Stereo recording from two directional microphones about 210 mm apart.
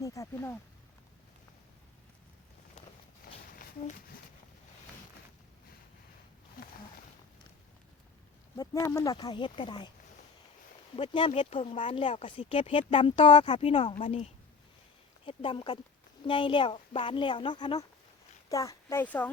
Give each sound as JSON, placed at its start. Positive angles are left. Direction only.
{"t": 0.0, "sound": "speech", "side_deg": 15}
{"t": 8.5, "sound": "speech", "side_deg": 15}
{"t": 10.9, "sound": "a woman's voice", "side_deg": 25}